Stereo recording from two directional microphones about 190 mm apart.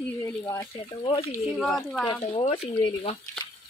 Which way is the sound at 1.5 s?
5° left (ahead or behind).